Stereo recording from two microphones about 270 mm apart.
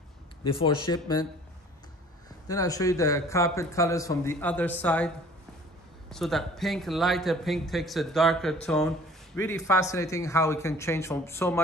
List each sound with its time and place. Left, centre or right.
0.5 s a man's voice: centre
2.4 s a man's voice: centre